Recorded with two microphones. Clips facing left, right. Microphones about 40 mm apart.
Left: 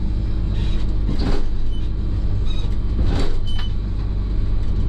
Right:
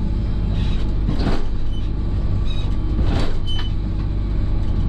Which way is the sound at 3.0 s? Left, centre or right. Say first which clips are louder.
Right 1 dB; right.